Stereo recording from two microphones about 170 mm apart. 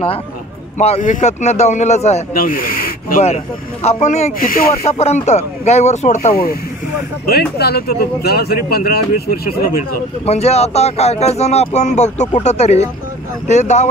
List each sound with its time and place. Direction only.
0.7 s speech: 40° left (ahead or behind)
2.3 s speech: 55° left (ahead or behind)
3.8 s a man's voice: 40° left (ahead or behind)
4.4 s speech: 55° left (ahead or behind)
4.8 s speech: 40° left (ahead or behind)
6.3 s speech: 60° left (ahead or behind)
10.2 s a man's voice: 40° left (ahead or behind)